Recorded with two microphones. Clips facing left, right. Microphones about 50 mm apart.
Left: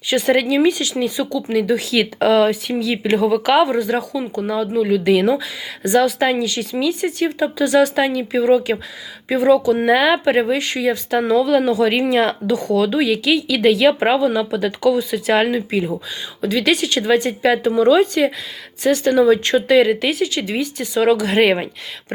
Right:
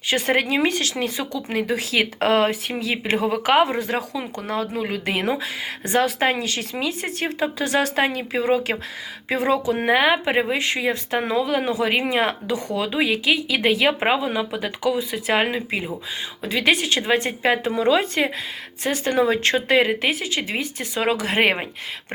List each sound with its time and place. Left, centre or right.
0.1 s speech: right
1.6 s speech: right
3.6 s speech: right
4.2 s speech: right
4.8 s speech: right
9.8 s speech: centre
18.8 s speech: right
19.1 s speech: right